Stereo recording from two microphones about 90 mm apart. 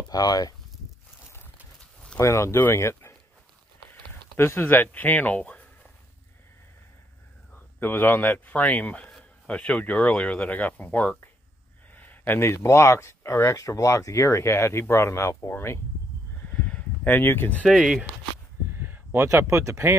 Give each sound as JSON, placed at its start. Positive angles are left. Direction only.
{"t": 0.1, "sound": "speech", "side_deg": 45}
{"t": 1.8, "sound": "a sound", "side_deg": 10}
{"t": 2.1, "sound": "speech", "side_deg": 35}
{"t": 7.8, "sound": "speech", "side_deg": 20}
{"t": 16.4, "sound": "a sound", "side_deg": 15}
{"t": 17.6, "sound": "speech", "side_deg": -5}
{"t": 18.7, "sound": "speech", "side_deg": -25}